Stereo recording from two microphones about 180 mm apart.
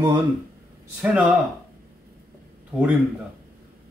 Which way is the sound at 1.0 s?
5° right (ahead or behind).